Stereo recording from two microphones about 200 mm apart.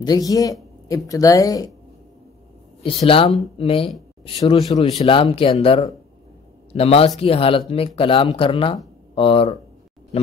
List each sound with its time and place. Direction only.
0.0 s speech: 20° left (ahead or behind)
3.1 s speech: 25° left (ahead or behind)